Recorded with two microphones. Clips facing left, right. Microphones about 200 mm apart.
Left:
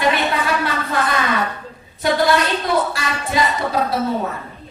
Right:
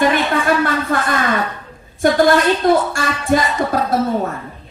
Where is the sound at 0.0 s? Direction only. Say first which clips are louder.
Right 3 dB; 50° right (ahead or behind).